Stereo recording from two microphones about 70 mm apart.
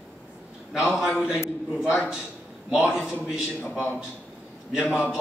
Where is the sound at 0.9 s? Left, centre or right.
Centre.